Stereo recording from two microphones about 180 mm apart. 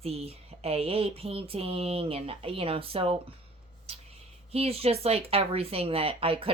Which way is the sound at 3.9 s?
35° right (ahead or behind).